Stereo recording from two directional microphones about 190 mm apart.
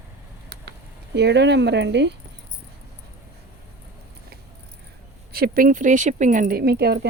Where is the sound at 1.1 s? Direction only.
65° right (ahead or behind).